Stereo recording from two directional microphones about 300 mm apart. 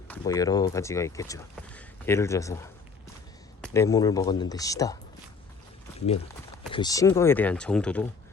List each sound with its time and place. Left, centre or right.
0.1 s speech: centre
6.7 s speech: centre